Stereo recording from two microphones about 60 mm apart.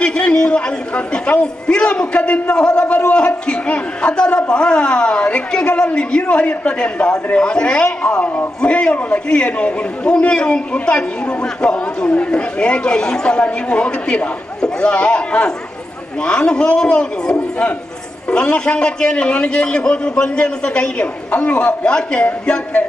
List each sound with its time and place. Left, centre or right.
0.0 s a man's voice: centre